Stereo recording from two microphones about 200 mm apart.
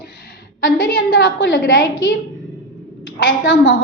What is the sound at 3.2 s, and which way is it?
Speech, 65° left (ahead or behind).